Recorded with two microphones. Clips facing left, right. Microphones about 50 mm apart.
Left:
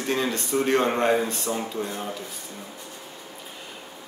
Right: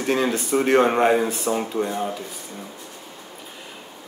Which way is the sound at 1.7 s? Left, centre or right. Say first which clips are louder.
Right 6 dB; right.